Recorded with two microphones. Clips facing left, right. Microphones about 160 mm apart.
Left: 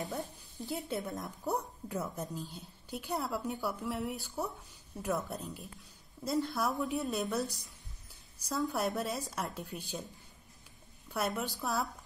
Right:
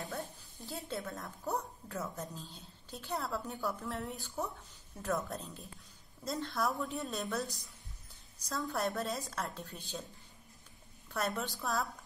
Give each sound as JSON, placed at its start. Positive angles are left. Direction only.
{"t": 0.0, "sound": "a woman's voice", "side_deg": 15}
{"t": 8.7, "sound": "a woman's voice", "side_deg": 10}
{"t": 11.1, "sound": "a woman's voice", "side_deg": 10}